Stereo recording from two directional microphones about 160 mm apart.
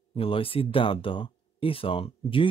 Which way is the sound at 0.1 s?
35° left (ahead or behind).